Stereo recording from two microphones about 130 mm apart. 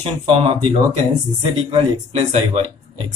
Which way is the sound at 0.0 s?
45° right (ahead or behind).